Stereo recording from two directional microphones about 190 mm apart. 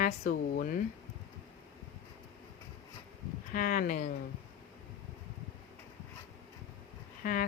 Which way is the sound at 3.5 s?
45° left (ahead or behind).